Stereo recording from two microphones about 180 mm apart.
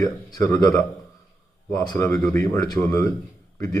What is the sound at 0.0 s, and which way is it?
Speech, 20° left (ahead or behind).